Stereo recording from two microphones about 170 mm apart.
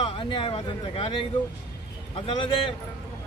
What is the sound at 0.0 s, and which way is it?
Speech, 30° left (ahead or behind).